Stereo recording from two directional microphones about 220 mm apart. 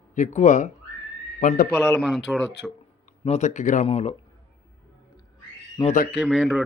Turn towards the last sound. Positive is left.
turn(degrees=0)  # may be behind; listen again after turning